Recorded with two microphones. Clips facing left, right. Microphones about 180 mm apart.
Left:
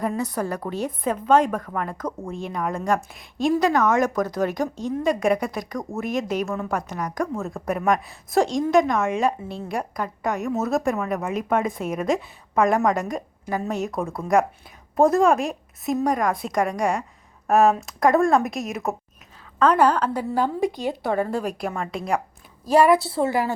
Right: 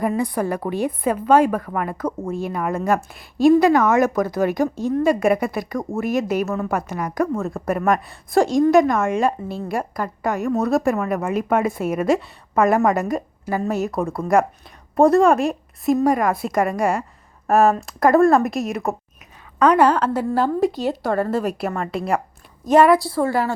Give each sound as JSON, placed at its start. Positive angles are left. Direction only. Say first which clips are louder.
{"t": 0.0, "sound": "a woman's voice", "louder": "right 4 dB", "side_deg": -10}
{"t": 19.5, "sound": "a woman's voice", "louder": "right 3 dB", "side_deg": -10}
{"t": 20.9, "sound": "speech", "louder": "right 2 dB", "side_deg": 15}
{"t": 21.2, "sound": "a woman's voice", "louder": "right 4 dB", "side_deg": -5}
{"t": 23.0, "sound": "a woman's voice", "louder": "right 2 dB", "side_deg": 25}